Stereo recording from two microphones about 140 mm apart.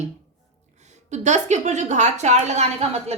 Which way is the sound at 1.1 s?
55° right (ahead or behind).